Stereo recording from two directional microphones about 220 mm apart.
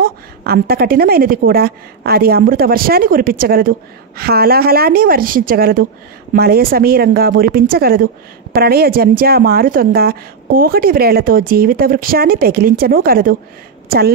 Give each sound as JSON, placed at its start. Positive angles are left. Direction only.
{"t": 0.0, "sound": "a woman's voice", "side_deg": -45}